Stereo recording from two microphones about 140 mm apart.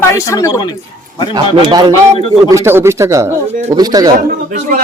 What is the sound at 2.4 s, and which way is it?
Speech, 20° right (ahead or behind).